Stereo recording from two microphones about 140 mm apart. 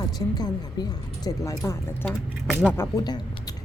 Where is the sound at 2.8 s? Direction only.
25° left (ahead or behind).